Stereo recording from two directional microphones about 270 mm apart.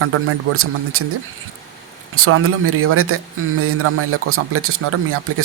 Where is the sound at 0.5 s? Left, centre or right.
Right.